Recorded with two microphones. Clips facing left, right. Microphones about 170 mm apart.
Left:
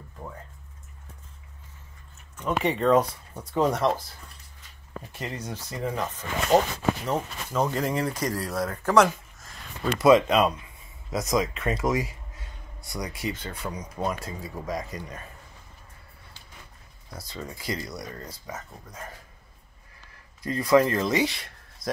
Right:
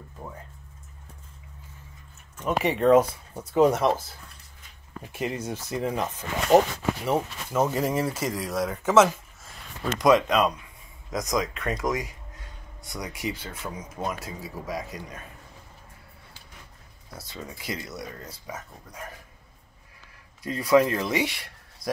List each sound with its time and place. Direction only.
2.3 s speech: 5° right (ahead or behind)
5.1 s speech: 20° right (ahead or behind)
7.1 s speech: 5° right (ahead or behind)
9.9 s speech: 5° left (ahead or behind)
12.9 s speech: 10° right (ahead or behind)
17.2 s speech: 5° right (ahead or behind)
20.4 s speech: 10° right (ahead or behind)